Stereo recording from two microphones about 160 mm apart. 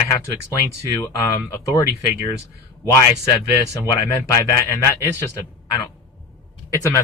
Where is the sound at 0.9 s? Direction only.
20° left (ahead or behind).